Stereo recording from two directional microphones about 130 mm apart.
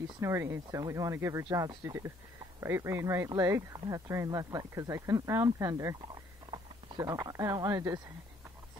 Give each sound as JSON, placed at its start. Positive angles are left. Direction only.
{"t": 0.2, "sound": "speech", "side_deg": -20}